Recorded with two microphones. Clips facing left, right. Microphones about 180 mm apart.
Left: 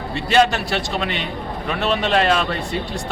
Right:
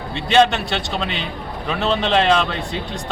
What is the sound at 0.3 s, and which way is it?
A man's voice, 5° left (ahead or behind).